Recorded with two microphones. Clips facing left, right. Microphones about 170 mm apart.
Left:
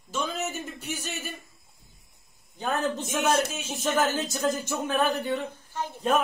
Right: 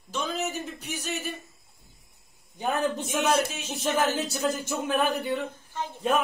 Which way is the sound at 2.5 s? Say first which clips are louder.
Right 1 dB; 15° right (ahead or behind).